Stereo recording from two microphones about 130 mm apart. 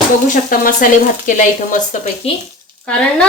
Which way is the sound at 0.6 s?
90° left.